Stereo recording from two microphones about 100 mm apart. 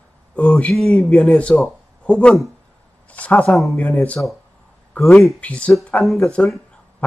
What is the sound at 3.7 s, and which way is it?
A man's voice, 15° left (ahead or behind).